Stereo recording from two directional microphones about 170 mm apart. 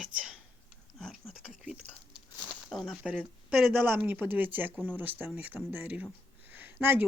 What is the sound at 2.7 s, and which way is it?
Speech, centre (ahead or behind).